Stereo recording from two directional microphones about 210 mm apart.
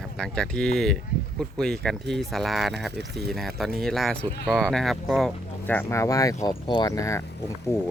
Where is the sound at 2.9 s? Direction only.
55° right (ahead or behind).